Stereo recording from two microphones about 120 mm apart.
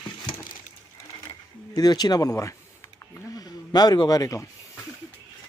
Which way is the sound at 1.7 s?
35° left (ahead or behind).